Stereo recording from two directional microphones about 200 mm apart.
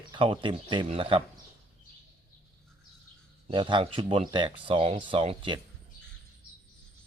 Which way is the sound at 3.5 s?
25° right (ahead or behind).